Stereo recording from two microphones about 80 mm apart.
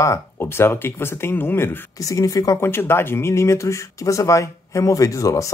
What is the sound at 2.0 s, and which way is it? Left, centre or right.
Speech, left.